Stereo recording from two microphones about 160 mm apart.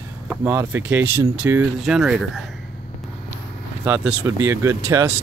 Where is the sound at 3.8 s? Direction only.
10° right (ahead or behind).